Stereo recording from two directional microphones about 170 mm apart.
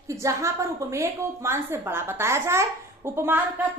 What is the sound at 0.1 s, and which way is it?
A woman's voice, 20° right (ahead or behind).